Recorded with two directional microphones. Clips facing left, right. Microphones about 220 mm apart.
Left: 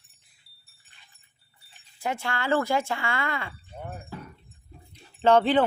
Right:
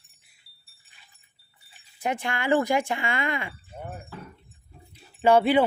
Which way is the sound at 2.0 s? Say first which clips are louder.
Right 1 dB; 15° right (ahead or behind).